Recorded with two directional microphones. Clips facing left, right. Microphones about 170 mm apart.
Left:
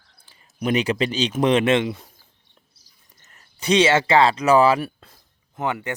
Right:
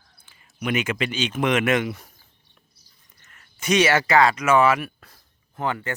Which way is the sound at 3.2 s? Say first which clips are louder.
Left 2 dB; 35° left (ahead or behind).